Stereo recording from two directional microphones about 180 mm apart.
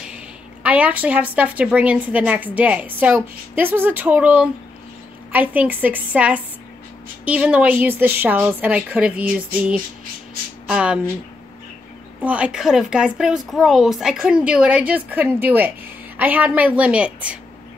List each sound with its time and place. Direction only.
0.7 s a woman's voice: 10° right (ahead or behind)
12.2 s a woman's voice: 5° right (ahead or behind)